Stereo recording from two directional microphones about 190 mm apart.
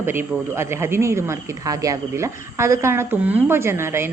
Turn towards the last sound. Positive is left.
turn(degrees=-15)  # may be behind; listen again after turning